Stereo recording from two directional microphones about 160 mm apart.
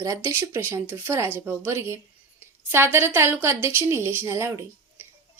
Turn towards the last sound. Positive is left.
turn(degrees=-15)  # may be behind; listen again after turning